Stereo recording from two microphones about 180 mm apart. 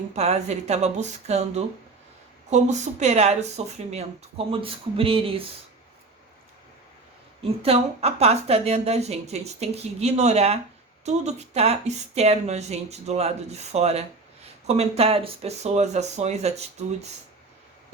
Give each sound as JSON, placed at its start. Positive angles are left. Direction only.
{"t": 0.1, "sound": "a woman's voice", "side_deg": -35}
{"t": 7.4, "sound": "a woman's voice", "side_deg": -35}